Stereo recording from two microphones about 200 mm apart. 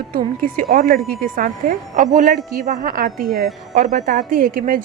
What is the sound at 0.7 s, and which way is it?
A woman's voice, 45° right (ahead or behind).